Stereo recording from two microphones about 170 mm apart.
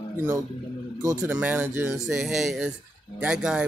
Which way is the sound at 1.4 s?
10° right (ahead or behind).